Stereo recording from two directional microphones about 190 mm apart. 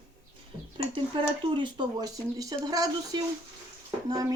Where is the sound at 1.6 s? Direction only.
20° right (ahead or behind).